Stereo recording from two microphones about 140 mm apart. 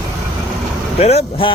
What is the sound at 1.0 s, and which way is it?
Speech, 45° left (ahead or behind).